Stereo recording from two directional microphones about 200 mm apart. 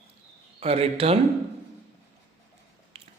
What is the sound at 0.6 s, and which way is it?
Speech, 30° right (ahead or behind).